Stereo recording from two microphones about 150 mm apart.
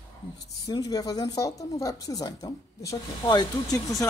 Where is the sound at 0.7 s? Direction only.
25° left (ahead or behind).